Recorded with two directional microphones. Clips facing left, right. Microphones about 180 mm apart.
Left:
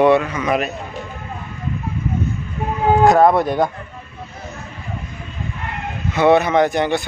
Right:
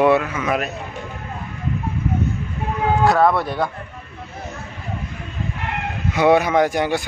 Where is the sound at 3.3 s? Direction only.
20° left (ahead or behind).